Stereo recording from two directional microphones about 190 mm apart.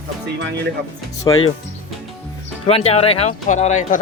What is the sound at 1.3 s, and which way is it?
Speech, 20° left (ahead or behind).